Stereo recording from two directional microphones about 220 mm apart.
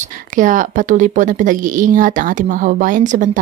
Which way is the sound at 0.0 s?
35° right (ahead or behind).